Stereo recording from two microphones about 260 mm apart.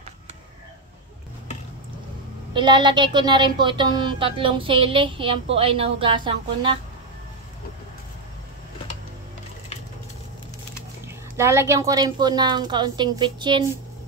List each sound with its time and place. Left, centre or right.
2.5 s a woman's voice: centre
11.1 s a woman's voice: centre